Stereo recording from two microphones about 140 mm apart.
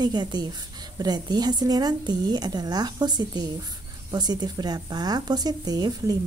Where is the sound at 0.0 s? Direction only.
30° right (ahead or behind).